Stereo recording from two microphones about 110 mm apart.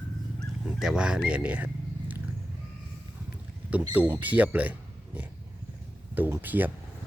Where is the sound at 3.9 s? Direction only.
15° right (ahead or behind).